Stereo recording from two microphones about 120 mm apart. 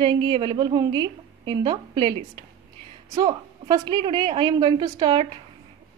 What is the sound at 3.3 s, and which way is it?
Speech, 40° right (ahead or behind).